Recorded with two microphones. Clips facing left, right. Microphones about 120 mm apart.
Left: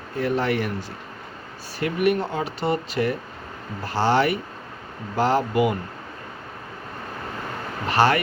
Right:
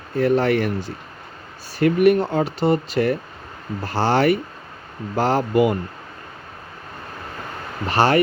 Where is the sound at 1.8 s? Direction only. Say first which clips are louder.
Right 6 dB; 45° right (ahead or behind).